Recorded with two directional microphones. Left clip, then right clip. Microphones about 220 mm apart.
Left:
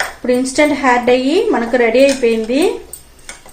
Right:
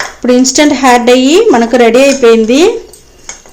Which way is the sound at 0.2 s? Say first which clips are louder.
Right 7 dB; 50° right (ahead or behind).